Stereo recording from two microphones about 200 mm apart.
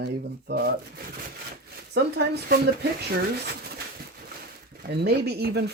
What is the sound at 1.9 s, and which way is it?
Speech, 55° right (ahead or behind).